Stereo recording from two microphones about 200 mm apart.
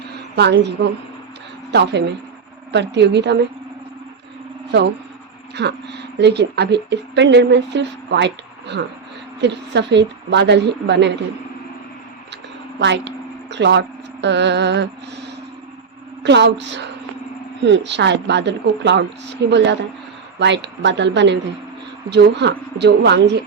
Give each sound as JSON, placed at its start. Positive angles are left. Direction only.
{"t": 0.3, "sound": "speech", "side_deg": -55}
{"t": 5.5, "sound": "speech", "side_deg": -55}
{"t": 12.8, "sound": "speech", "side_deg": -60}
{"t": 16.2, "sound": "speech", "side_deg": -60}